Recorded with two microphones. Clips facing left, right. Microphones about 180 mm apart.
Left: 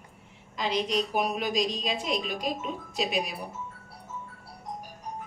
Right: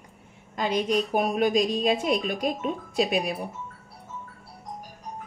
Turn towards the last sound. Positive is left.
turn(degrees=-50)  # may be behind; listen again after turning